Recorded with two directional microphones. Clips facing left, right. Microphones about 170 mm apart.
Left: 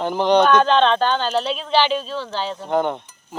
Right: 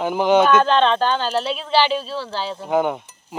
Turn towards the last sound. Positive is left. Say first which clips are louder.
# right 1 dB
turn(degrees=-10)  # may be behind; listen again after turning